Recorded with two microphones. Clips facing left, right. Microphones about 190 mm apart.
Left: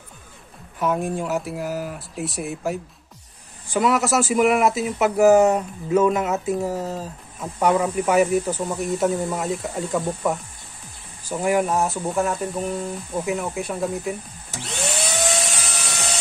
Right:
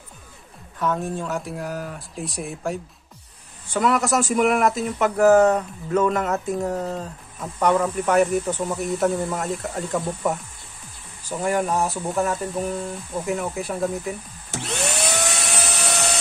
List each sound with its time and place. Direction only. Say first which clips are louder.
0.7 s speech: left 2 dB; 10° left (ahead or behind)
14.5 s vacuum cleaner: right 2 dB; 65° right (ahead or behind)
15.4 s a sound: right 3 dB; 65° right (ahead or behind)